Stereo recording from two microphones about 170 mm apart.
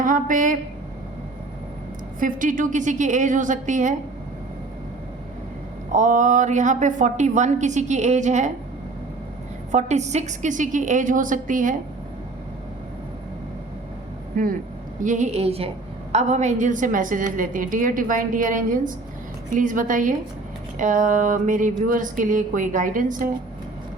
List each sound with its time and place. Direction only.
0.0 s a woman's voice: 50° right (ahead or behind)
2.1 s a woman's voice: 50° right (ahead or behind)
5.9 s a woman's voice: 50° right (ahead or behind)
9.7 s a woman's voice: 40° right (ahead or behind)
14.3 s speech: 55° right (ahead or behind)
15.0 s a woman's voice: 45° right (ahead or behind)